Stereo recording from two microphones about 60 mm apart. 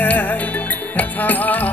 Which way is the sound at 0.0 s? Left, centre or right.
Left.